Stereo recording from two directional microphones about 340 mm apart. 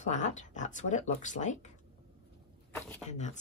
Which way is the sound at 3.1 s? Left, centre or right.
Left.